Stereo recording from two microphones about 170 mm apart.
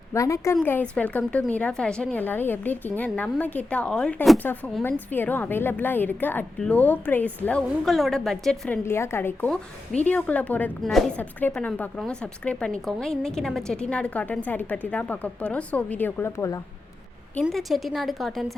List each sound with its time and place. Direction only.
0.1 s a woman's voice: 20° left (ahead or behind)
8.8 s a woman's voice: 15° left (ahead or behind)
17.4 s a woman's voice: centre (ahead or behind)